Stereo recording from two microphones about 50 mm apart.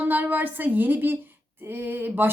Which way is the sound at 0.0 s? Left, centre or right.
Right.